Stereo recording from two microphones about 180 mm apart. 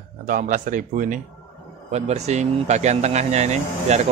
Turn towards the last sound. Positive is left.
turn(degrees=-40)  # may be behind; listen again after turning